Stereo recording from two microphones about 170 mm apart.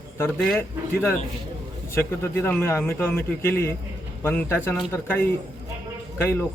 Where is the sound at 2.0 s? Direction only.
10° left (ahead or behind).